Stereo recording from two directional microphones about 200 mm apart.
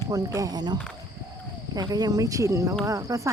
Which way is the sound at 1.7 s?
20° right (ahead or behind).